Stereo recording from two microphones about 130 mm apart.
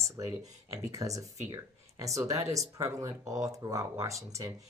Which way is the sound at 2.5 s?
25° right (ahead or behind).